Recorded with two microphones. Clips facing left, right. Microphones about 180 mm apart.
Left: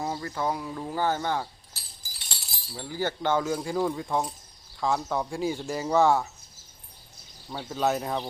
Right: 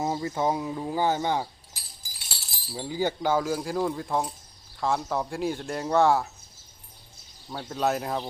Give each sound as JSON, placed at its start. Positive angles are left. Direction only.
{"t": 0.0, "sound": "speech", "side_deg": -20}
{"t": 2.4, "sound": "a sound", "side_deg": 0}
{"t": 2.8, "sound": "speech", "side_deg": -15}
{"t": 7.5, "sound": "speech", "side_deg": 0}